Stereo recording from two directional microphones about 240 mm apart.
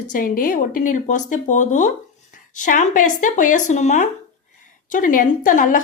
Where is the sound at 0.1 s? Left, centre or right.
Left.